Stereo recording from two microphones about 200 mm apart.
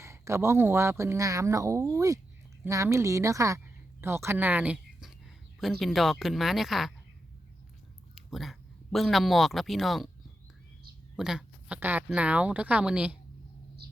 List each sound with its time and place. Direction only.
0.0 s speech: 15° right (ahead or behind)
8.1 s speech: centre (ahead or behind)
11.2 s speech: 5° right (ahead or behind)
13.8 s a sound: 55° right (ahead or behind)